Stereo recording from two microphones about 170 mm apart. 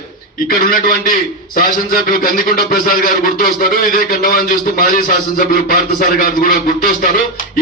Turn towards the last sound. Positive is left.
turn(degrees=55)  # may be behind; listen again after turning